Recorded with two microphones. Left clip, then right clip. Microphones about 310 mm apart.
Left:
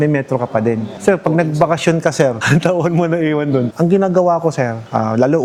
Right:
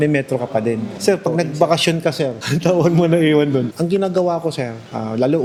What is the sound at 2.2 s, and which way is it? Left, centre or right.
A man's voice, left.